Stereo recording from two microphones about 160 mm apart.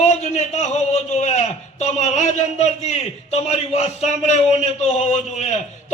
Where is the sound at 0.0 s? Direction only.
45° left (ahead or behind).